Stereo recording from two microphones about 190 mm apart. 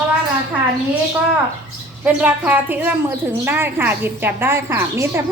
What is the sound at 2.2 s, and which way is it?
A woman's voice, 10° right (ahead or behind).